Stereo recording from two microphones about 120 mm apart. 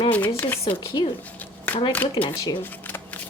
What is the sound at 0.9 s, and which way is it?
Speech, 40° left (ahead or behind).